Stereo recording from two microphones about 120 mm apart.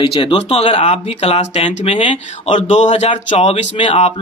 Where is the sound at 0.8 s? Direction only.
65° left (ahead or behind); by 2.1 s 50° left (ahead or behind).